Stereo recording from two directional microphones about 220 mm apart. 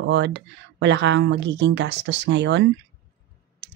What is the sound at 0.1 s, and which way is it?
Speech, 55° right (ahead or behind).